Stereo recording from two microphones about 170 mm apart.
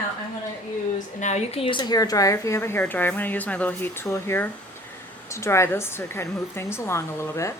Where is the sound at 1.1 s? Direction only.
45° left (ahead or behind); by 7.5 s 15° left (ahead or behind).